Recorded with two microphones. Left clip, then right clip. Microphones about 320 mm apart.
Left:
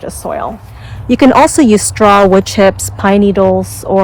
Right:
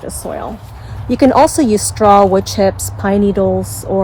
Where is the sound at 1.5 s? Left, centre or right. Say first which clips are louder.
Left 5 dB; left.